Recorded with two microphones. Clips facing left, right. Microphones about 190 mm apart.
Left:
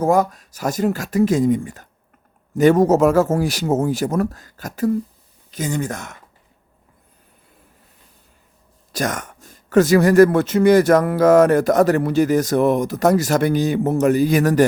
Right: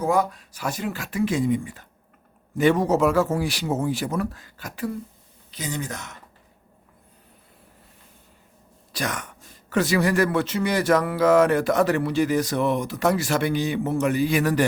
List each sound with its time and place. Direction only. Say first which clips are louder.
0.0 s a man's voice: left 5 dB; 45° left (ahead or behind)
8.9 s a man's voice: left 6 dB; 45° left (ahead or behind)